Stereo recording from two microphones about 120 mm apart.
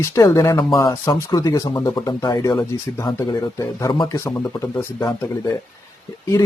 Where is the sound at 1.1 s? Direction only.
35° left (ahead or behind).